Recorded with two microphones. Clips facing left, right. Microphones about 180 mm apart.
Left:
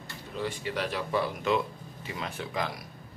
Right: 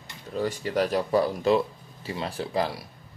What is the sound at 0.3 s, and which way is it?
Speech, 40° right (ahead or behind).